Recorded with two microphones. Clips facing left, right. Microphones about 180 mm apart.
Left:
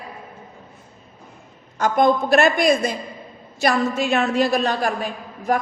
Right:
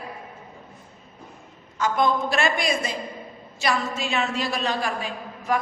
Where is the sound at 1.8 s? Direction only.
55° left (ahead or behind).